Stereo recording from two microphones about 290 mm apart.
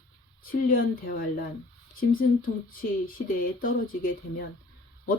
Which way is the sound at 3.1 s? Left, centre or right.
Left.